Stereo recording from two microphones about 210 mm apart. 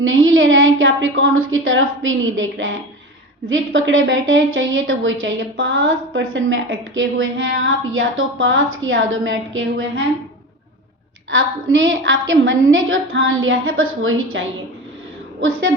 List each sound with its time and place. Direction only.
0.0 s a woman's voice: 70° right (ahead or behind)
11.3 s a woman's voice: 65° right (ahead or behind)